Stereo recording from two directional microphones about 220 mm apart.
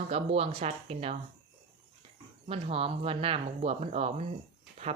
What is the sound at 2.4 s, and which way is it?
Speech, 25° right (ahead or behind).